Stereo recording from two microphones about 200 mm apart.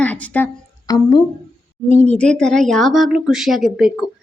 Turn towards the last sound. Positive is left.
turn(degrees=0)  # may be behind; listen again after turning